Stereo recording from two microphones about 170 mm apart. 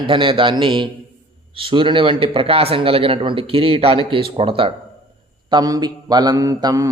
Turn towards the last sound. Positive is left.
turn(degrees=-20)  # may be behind; listen again after turning